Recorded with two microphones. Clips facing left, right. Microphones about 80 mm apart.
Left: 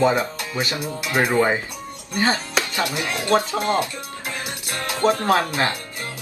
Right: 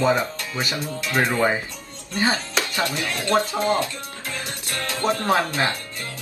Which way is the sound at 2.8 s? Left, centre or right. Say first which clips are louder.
Left 1 dB; centre.